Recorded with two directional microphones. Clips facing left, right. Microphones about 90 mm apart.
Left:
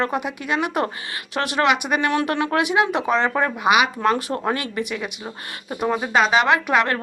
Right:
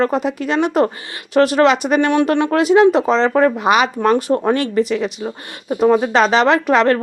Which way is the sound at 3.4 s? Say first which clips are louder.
Right 4 dB; 35° right (ahead or behind).